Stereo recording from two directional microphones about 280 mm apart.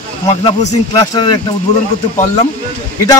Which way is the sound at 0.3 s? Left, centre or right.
Left.